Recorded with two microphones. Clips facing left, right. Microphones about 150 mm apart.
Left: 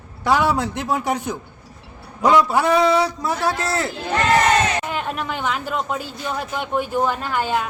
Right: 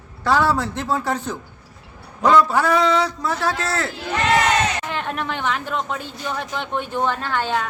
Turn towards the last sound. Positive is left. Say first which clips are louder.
# left 1 dB
turn(degrees=10)  # may be behind; listen again after turning